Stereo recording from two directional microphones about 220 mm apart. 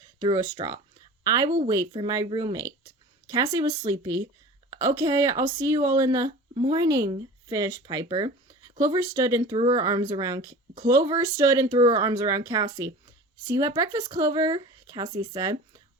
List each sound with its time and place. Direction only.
0.2 s speech: 20° right (ahead or behind)
6.5 s speech: 25° right (ahead or behind)
6.7 s speech: 15° right (ahead or behind)